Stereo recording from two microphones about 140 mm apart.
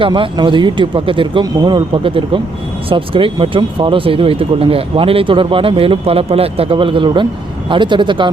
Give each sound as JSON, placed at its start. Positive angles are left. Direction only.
{"t": 0.0, "sound": "speech", "side_deg": -35}